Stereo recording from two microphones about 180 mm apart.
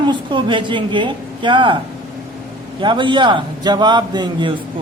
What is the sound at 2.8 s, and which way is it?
Speech, 25° right (ahead or behind).